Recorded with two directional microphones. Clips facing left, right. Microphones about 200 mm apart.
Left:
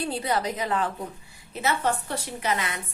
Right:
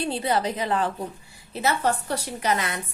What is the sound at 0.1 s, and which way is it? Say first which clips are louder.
A woman's voice: right 2 dB; 25° right (ahead or behind).